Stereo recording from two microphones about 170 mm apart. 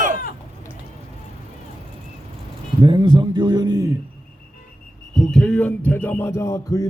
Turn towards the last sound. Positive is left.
turn(degrees=20)  # may be behind; listen again after turning